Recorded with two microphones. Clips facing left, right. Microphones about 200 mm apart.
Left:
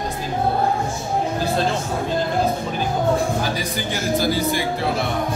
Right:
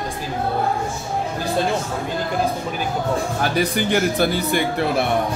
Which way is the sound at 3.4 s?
60° right (ahead or behind).